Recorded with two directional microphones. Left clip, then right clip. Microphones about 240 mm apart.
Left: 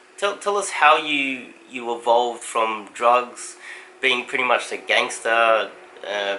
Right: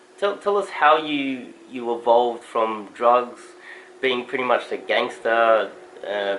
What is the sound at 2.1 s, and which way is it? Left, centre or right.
Speech, right.